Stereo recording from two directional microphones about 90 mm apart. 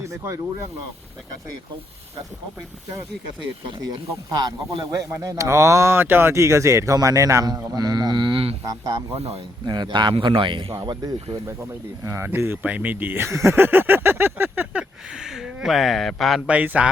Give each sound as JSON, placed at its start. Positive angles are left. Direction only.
{"t": 3.8, "sound": "speech", "side_deg": -50}
{"t": 8.9, "sound": "speech", "side_deg": -70}
{"t": 9.6, "sound": "speech", "side_deg": -50}
{"t": 10.8, "sound": "speech", "side_deg": -50}
{"t": 12.0, "sound": "speech", "side_deg": -30}
{"t": 16.5, "sound": "a man's voice", "side_deg": -15}